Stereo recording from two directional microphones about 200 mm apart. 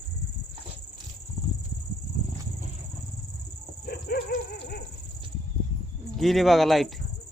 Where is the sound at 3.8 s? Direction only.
50° left (ahead or behind).